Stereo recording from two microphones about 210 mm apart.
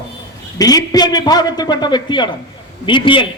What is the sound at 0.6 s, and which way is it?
A man's voice, 20° left (ahead or behind).